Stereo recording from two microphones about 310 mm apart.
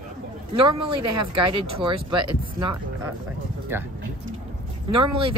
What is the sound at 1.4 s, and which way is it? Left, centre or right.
Speech, centre.